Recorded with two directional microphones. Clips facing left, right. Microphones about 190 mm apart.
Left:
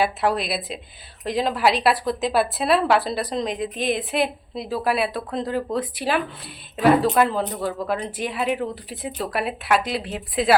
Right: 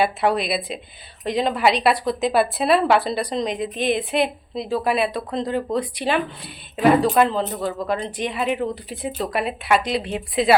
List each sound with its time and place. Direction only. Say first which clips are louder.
0.0 s a woman's voice: right 2 dB; centre (ahead or behind)